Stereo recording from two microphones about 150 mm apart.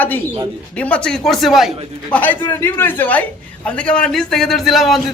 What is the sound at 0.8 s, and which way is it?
A man's voice, 5° left (ahead or behind).